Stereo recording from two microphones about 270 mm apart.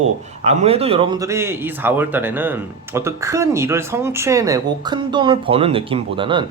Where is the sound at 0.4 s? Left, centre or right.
Right.